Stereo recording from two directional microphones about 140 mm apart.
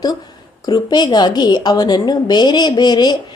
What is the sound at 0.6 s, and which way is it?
A woman's voice, 30° left (ahead or behind).